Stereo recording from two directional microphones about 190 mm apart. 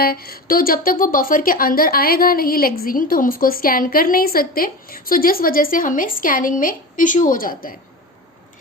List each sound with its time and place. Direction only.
0.0 s a woman's voice: 50° left (ahead or behind)